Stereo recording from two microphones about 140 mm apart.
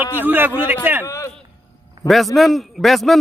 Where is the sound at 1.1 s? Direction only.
20° left (ahead or behind).